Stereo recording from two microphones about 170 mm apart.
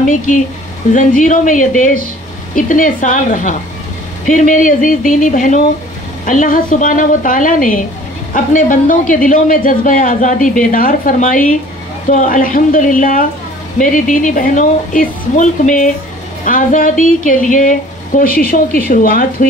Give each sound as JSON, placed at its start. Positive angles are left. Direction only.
{"t": 0.3, "sound": "a man's voice", "side_deg": 50}